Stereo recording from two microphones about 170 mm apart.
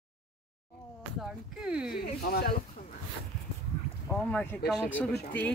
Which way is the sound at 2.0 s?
70° left (ahead or behind).